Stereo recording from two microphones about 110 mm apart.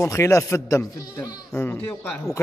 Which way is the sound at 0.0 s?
30° left (ahead or behind).